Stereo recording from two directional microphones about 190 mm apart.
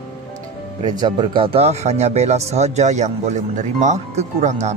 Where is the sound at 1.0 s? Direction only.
25° right (ahead or behind).